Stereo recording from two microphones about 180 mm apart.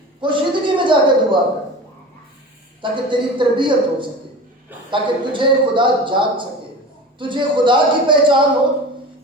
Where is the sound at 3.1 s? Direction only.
25° right (ahead or behind).